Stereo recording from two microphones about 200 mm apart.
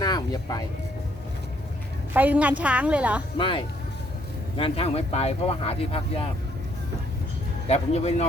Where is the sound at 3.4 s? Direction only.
25° left (ahead or behind).